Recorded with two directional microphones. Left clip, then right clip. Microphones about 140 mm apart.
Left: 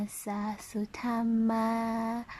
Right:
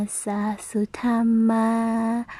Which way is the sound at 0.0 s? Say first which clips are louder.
Right 8 dB; 25° right (ahead or behind).